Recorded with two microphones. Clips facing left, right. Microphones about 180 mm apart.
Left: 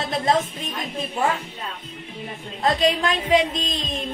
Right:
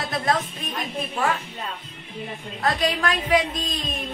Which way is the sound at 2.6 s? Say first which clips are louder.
Left 3 dB; 20° left (ahead or behind).